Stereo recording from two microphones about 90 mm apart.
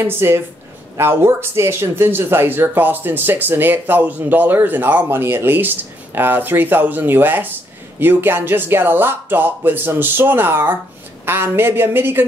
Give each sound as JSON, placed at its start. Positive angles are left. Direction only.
{"t": 0.0, "sound": "speech", "side_deg": -25}